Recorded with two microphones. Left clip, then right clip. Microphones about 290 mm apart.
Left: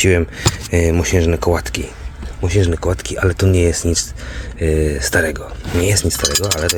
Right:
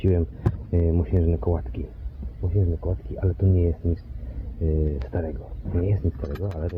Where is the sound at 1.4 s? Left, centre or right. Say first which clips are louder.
Left 11 dB; left.